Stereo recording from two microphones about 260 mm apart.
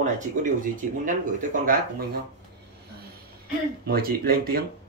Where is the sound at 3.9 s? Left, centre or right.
Right.